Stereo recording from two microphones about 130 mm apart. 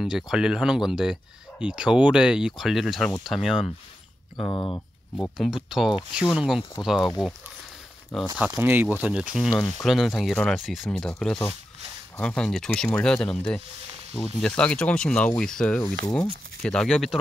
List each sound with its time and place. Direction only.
0.0 s speech: 5° right (ahead or behind)
4.5 s speech: 30° left (ahead or behind)
5.2 s speech: centre (ahead or behind)
8.4 s speech: 10° right (ahead or behind)